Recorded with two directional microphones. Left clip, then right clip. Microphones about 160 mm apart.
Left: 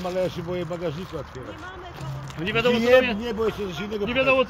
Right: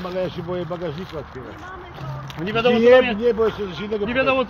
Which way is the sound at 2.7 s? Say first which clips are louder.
Right 5 dB; 20° left (ahead or behind).